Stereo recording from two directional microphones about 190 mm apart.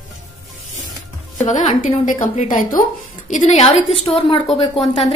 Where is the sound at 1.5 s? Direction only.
40° left (ahead or behind).